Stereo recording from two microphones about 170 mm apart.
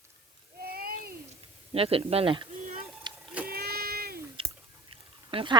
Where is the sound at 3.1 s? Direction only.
25° right (ahead or behind).